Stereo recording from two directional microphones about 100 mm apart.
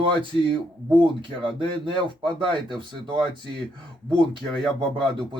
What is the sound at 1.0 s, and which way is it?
Speech, 55° right (ahead or behind).